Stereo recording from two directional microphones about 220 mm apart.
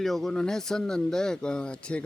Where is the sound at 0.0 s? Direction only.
Centre (ahead or behind).